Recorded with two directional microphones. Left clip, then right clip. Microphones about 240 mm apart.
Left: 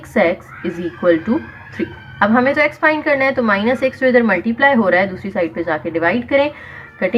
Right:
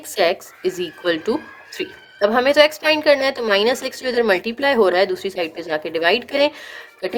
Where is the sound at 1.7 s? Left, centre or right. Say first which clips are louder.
Left 6 dB; right.